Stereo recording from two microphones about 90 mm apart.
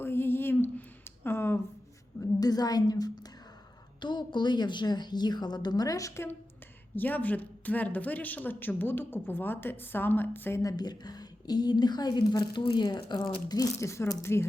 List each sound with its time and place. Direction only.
0.0 s a sound: 25° left (ahead or behind)
2.2 s a woman's voice: 45° left (ahead or behind)
4.0 s a woman's voice: 60° left (ahead or behind); by 6.2 s 35° left (ahead or behind)
6.9 s speech: 20° left (ahead or behind)
10.6 s a woman's voice: 45° left (ahead or behind)
13.5 s a woman's voice: 40° left (ahead or behind)